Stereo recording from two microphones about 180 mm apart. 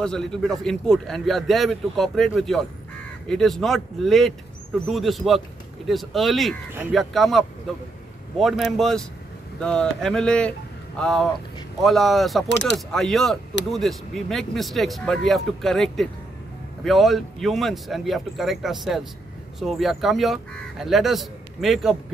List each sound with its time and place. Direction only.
0.0 s speech: 5° left (ahead or behind)
12.4 s speech: 75° left (ahead or behind)
12.7 s speech: centre (ahead or behind)